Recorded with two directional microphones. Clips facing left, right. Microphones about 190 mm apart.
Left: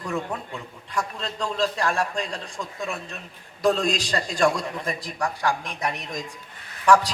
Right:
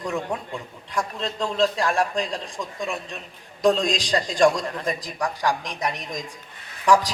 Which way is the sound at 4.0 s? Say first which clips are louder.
Right 3 dB; 15° right (ahead or behind).